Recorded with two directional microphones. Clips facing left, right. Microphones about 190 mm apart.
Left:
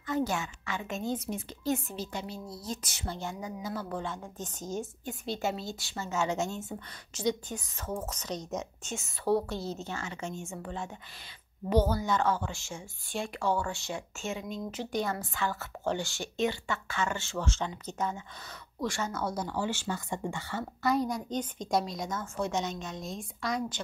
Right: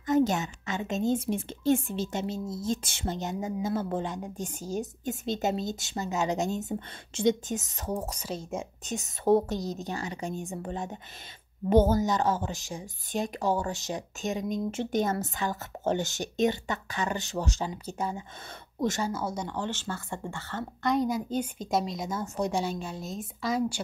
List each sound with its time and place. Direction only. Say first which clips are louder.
0.0 s a woman's voice: right 6 dB; 20° right (ahead or behind)
8.5 s a woman's voice: right 2 dB; 40° right (ahead or behind)
9.6 s a woman's voice: right 3 dB; 15° right (ahead or behind)
10.4 s a woman's voice: right 4 dB; 35° right (ahead or behind)
11.7 s a woman's voice: right 4 dB; 45° right (ahead or behind)
14.5 s a woman's voice: right 5 dB; 25° right (ahead or behind)
19.2 s a woman's voice: even; 5° left (ahead or behind)